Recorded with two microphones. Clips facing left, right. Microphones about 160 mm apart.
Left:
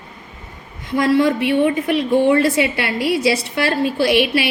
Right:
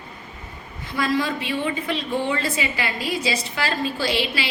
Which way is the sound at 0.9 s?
75° left (ahead or behind).